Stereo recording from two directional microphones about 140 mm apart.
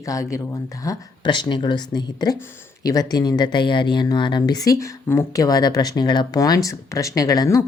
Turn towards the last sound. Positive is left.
turn(degrees=25)  # may be behind; listen again after turning